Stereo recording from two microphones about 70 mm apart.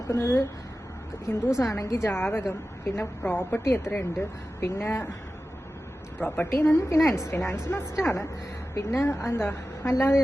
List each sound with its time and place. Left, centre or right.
0.1 s a woman's voice: left
1.5 s a woman's voice: left
2.0 s a woman's voice: left
6.2 s a woman's voice: left
6.5 s a woman's voice: left